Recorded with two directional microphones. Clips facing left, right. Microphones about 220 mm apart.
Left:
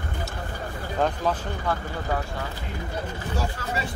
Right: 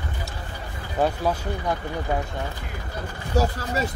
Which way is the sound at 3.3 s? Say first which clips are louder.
Right 7 dB; 40° right (ahead or behind).